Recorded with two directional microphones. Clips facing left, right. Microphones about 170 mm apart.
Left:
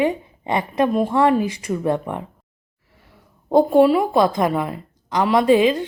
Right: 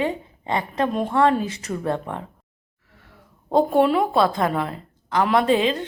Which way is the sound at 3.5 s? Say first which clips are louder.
Left 4 dB; 10° left (ahead or behind).